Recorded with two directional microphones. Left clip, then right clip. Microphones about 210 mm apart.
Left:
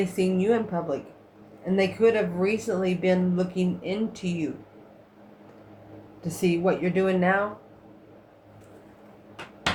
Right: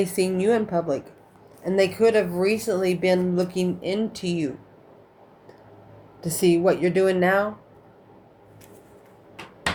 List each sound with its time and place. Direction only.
0.0 s speech: 40° right (ahead or behind)
6.2 s speech: 40° right (ahead or behind)